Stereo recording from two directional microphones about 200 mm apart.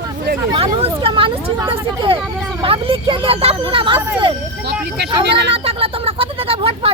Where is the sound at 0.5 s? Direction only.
30° right (ahead or behind).